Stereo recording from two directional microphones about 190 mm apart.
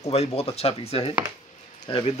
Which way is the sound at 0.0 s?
35° left (ahead or behind).